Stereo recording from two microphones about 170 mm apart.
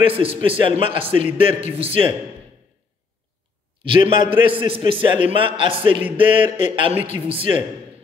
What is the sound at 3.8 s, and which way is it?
A man's voice, 30° right (ahead or behind).